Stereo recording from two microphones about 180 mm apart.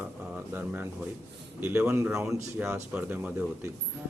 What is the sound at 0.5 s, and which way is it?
Speech, 10° right (ahead or behind).